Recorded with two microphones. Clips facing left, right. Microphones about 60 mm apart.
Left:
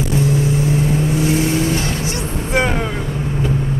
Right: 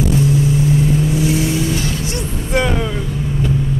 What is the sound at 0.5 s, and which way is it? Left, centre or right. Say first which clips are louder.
Vehicle: right 2 dB; left.